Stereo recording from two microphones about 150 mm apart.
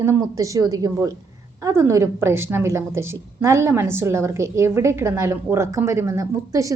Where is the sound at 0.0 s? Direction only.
20° right (ahead or behind).